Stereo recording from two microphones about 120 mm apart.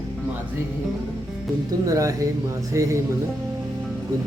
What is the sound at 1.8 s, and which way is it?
Speech, 30° right (ahead or behind).